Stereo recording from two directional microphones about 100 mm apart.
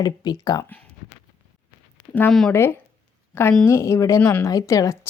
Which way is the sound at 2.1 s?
10° left (ahead or behind).